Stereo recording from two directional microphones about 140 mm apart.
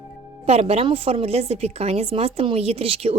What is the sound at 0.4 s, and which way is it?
A woman's voice, 45° right (ahead or behind).